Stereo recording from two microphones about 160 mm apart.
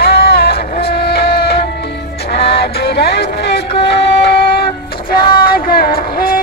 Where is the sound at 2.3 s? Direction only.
90° left.